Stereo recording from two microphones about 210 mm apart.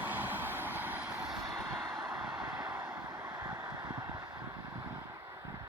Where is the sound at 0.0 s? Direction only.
10° right (ahead or behind).